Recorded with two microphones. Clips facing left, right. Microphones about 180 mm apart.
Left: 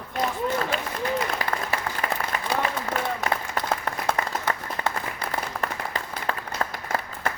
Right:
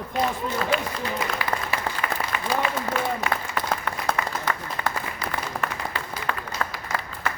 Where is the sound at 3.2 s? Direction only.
40° left (ahead or behind).